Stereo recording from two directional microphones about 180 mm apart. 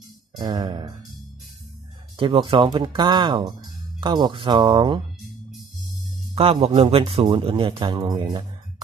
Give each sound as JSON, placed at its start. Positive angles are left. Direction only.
{"t": 0.4, "sound": "speech", "side_deg": -25}
{"t": 2.1, "sound": "speech", "side_deg": -30}
{"t": 6.3, "sound": "a man's voice", "side_deg": -35}